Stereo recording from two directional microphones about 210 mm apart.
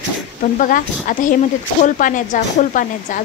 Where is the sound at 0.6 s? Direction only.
40° left (ahead or behind).